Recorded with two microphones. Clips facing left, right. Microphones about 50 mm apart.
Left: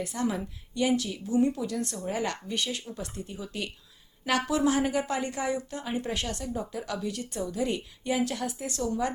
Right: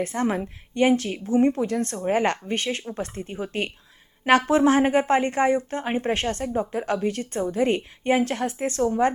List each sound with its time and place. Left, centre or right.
0.0 s a woman's voice: right